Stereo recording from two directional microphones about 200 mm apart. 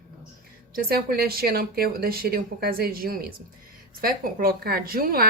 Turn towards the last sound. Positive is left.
turn(degrees=-50)  # may be behind; listen again after turning